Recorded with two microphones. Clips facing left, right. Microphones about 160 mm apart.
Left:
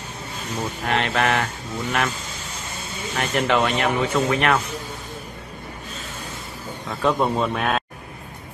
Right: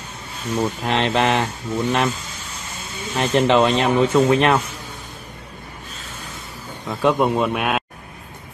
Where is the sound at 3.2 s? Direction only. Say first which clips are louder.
Right 5 dB; 25° right (ahead or behind).